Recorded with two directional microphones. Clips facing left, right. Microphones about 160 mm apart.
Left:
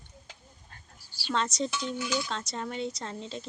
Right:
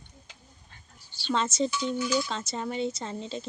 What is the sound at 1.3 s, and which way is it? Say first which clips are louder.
Speech: right 3 dB; centre (ahead or behind).